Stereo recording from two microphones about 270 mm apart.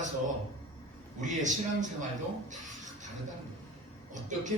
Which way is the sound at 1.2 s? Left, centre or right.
Right.